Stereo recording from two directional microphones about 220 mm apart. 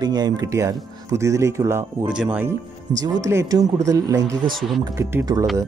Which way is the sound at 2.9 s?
15° right (ahead or behind).